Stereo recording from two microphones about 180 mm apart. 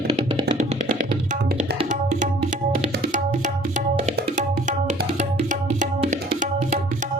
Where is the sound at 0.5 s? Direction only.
60° right (ahead or behind).